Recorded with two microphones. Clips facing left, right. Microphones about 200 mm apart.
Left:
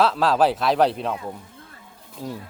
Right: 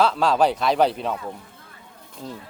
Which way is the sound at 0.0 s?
Centre (ahead or behind).